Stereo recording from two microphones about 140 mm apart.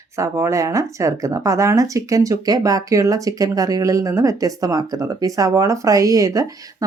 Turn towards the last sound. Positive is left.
turn(degrees=-25)  # may be behind; listen again after turning